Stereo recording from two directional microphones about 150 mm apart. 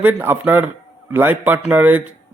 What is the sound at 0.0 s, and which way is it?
A man's voice, 15° right (ahead or behind).